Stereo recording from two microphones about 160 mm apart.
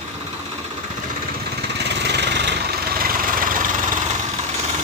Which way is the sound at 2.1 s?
90° right.